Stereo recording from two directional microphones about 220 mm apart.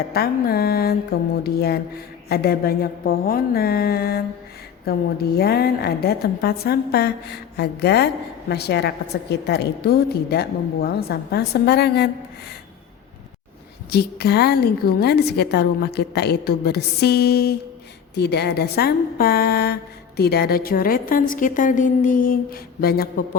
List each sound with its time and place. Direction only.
0.1 s a woman's voice: 45° left (ahead or behind)
13.9 s a woman's voice: 45° left (ahead or behind)